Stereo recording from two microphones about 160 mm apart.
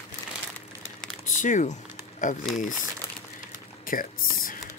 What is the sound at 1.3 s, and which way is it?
Speech, 50° left (ahead or behind).